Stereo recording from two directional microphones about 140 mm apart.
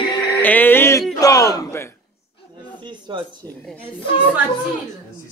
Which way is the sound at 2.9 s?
35° right (ahead or behind).